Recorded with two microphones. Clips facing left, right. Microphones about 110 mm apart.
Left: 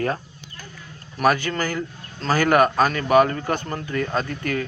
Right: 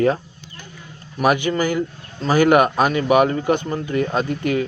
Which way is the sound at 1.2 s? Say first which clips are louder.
Right 3 dB; 15° right (ahead or behind).